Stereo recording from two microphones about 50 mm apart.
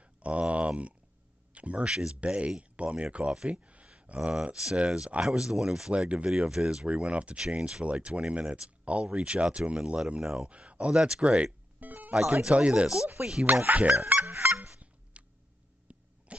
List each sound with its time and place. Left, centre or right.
0.0 s a sound: right
1.5 s speech: right
10.2 s speech: centre
10.5 s speech: right
11.8 s music: right
12.1 s speech: centre
13.7 s speech: right
14.2 s honk: right
15.2 s a sound: right